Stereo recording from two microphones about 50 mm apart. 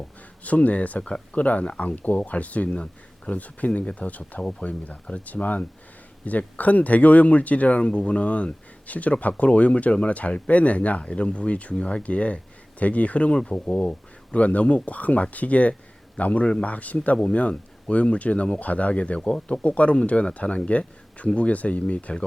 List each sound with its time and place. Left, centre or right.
0.4 s speech: left